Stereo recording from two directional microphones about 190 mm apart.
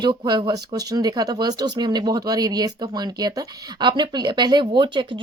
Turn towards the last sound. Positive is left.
turn(degrees=-25)  # may be behind; listen again after turning